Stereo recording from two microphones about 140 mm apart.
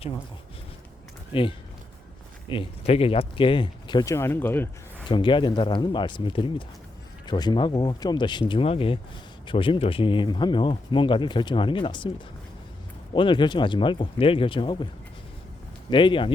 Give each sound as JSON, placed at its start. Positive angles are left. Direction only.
{"t": 1.3, "sound": "speech", "side_deg": 40}
{"t": 4.1, "sound": "speech", "side_deg": 15}
{"t": 5.0, "sound": "speech", "side_deg": 35}
{"t": 13.1, "sound": "speech", "side_deg": 35}
{"t": 15.9, "sound": "speech", "side_deg": 35}